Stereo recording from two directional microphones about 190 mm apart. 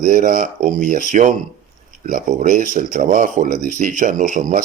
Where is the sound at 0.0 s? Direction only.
45° right (ahead or behind).